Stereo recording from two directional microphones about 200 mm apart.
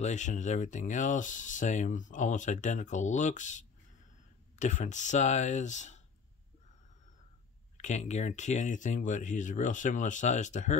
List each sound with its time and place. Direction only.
0.0 s speech: 35° left (ahead or behind)
7.7 s speech: 35° left (ahead or behind)